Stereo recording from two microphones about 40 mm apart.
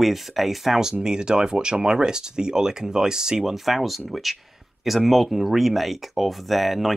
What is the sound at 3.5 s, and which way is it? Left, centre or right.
Speech, centre.